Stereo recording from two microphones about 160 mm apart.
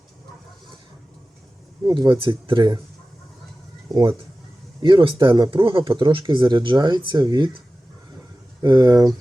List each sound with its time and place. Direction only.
1.8 s speech: 30° right (ahead or behind)
4.8 s speech: 30° right (ahead or behind)
8.6 s speech: 25° right (ahead or behind)